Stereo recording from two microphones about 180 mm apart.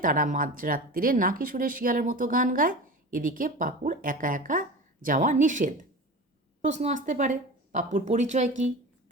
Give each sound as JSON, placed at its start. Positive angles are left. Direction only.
{"t": 0.0, "sound": "speech", "side_deg": -50}